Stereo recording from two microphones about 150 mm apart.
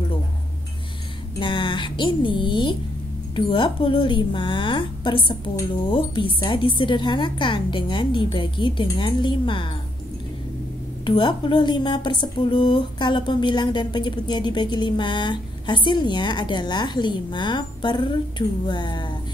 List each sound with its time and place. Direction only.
1.4 s speech: 35° left (ahead or behind)
11.1 s speech: 30° left (ahead or behind)